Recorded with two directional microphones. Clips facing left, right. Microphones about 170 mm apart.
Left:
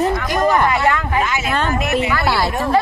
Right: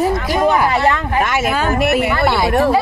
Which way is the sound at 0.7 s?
30° right (ahead or behind).